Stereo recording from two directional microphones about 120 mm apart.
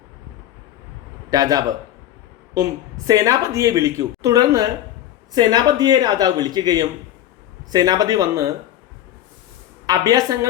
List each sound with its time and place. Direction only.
1.3 s a woman's voice: 30° right (ahead or behind)
9.8 s speech: 30° right (ahead or behind)